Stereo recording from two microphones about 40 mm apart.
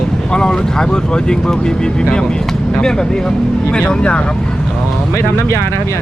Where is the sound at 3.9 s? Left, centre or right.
Left.